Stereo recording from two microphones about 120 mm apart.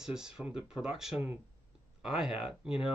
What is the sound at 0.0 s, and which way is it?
Speech, 5° right (ahead or behind).